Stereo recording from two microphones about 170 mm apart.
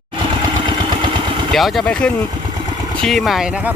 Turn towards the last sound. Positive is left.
turn(degrees=0)  # may be behind; listen again after turning